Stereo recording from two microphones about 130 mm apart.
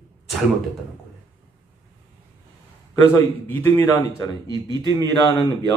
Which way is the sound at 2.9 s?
20° left (ahead or behind).